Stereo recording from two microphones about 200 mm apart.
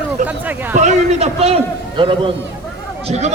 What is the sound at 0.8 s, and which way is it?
A man's voice, 35° right (ahead or behind).